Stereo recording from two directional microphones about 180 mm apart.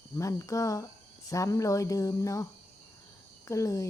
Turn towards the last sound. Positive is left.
turn(degrees=15)  # may be behind; listen again after turning